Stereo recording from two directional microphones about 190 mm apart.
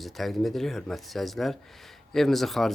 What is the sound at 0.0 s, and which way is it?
Speech, centre (ahead or behind).